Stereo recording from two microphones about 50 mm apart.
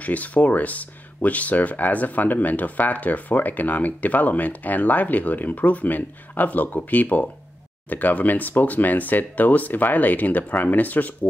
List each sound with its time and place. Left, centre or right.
0.0 s speech: left